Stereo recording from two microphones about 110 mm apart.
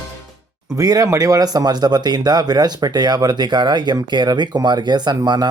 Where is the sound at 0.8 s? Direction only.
30° right (ahead or behind).